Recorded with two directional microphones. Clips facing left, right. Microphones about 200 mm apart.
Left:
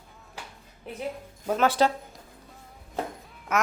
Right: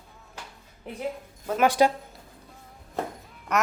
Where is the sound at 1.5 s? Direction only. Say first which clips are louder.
Right 2 dB; 15° right (ahead or behind).